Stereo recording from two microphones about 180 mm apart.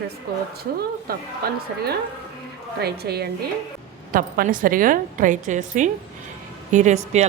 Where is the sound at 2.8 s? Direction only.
65° right (ahead or behind).